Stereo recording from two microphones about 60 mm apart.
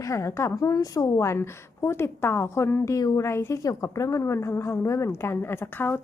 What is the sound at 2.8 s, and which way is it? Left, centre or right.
Speech, left.